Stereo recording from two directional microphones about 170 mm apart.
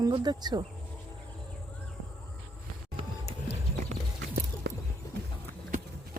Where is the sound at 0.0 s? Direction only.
25° right (ahead or behind).